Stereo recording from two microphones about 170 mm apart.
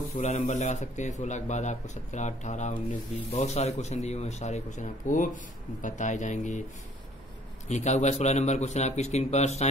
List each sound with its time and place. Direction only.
0.2 s speech: 45° left (ahead or behind)
7.6 s a man's voice: 40° left (ahead or behind)